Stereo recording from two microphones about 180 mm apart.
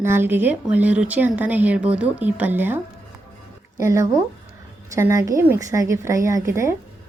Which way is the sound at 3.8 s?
15° right (ahead or behind).